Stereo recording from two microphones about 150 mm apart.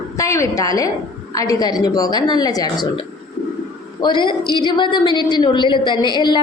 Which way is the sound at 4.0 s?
30° left (ahead or behind).